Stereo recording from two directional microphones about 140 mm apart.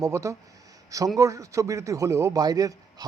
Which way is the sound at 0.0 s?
20° right (ahead or behind).